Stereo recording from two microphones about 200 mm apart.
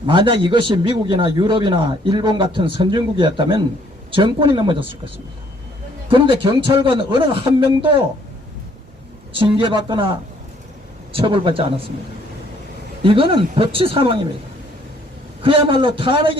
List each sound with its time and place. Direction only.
0.0 s a man's voice: 25° right (ahead or behind)
6.1 s a man's voice: 25° right (ahead or behind)
9.3 s a man's voice: 25° right (ahead or behind)
13.0 s a man's voice: 25° right (ahead or behind)
15.4 s a man's voice: 25° right (ahead or behind)